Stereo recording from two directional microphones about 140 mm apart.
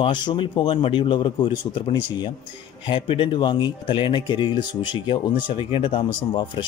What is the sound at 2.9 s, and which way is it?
Speech, 40° left (ahead or behind).